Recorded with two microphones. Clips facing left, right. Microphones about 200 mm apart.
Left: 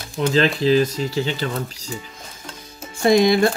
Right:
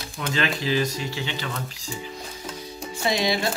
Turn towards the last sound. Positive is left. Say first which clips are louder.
# left 9 dB
turn(degrees=50)  # may be behind; listen again after turning